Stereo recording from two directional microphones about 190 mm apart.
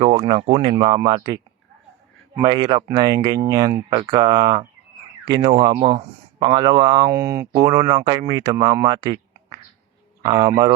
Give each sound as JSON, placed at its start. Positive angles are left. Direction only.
{"t": 0.0, "sound": "speech", "side_deg": -30}
{"t": 2.4, "sound": "speech", "side_deg": -25}
{"t": 10.2, "sound": "speech", "side_deg": -20}